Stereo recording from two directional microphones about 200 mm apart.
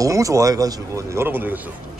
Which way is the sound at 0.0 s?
15° right (ahead or behind).